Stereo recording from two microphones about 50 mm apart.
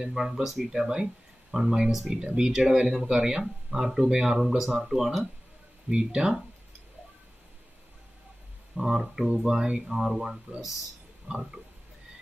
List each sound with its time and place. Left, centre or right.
0.0 s speech: centre
5.9 s speech: centre
8.7 s speech: centre
9.5 s speech: centre
11.3 s speech: right